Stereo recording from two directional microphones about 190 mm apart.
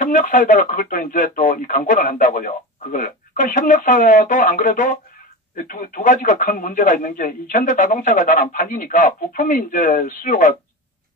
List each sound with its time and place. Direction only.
0.0 s speech: 45° left (ahead or behind)